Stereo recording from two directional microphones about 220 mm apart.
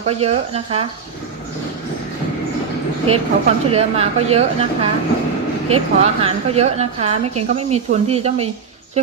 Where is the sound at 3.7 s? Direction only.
25° right (ahead or behind).